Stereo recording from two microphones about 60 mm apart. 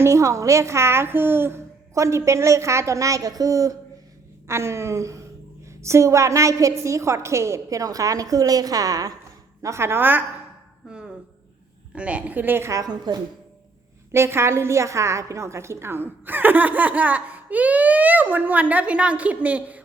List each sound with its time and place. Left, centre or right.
0.0 s a woman's voice: right
2.0 s a woman's voice: right
4.4 s a woman's voice: right
7.8 s a woman's voice: right
9.6 s a woman's voice: right
10.8 s a sound: centre
11.9 s a woman's voice: right
12.5 s a woman's voice: right
14.1 s a woman's voice: right